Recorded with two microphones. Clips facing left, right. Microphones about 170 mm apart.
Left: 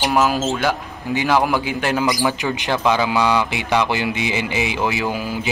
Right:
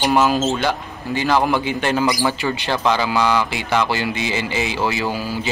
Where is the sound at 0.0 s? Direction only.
5° left (ahead or behind).